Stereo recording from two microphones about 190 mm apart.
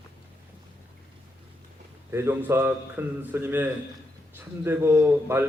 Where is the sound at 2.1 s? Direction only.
10° right (ahead or behind).